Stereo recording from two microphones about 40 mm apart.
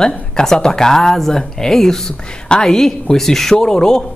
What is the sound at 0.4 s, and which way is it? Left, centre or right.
Speech, centre.